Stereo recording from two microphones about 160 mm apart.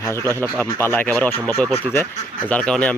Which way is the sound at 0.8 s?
15° left (ahead or behind).